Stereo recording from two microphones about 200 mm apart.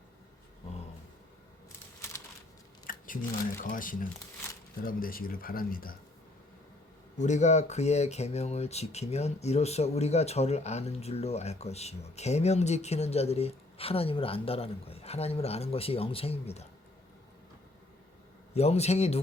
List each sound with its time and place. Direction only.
2.8 s speech: 45° left (ahead or behind)
7.2 s speech: 35° left (ahead or behind)
18.5 s speech: 30° left (ahead or behind)